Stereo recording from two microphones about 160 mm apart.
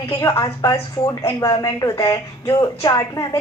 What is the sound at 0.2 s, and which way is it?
Speech, 20° left (ahead or behind).